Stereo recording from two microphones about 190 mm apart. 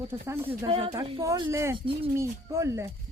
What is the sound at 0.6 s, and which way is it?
Speech, 30° right (ahead or behind).